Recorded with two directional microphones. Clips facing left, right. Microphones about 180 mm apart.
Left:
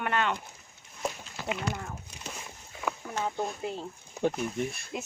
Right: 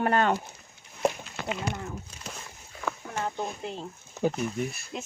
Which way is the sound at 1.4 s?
65° right (ahead or behind).